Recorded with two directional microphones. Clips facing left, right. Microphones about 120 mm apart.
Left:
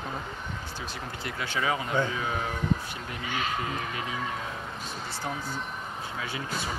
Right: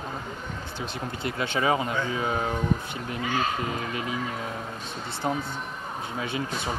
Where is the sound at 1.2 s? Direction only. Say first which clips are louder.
Right 5 dB; 25° right (ahead or behind).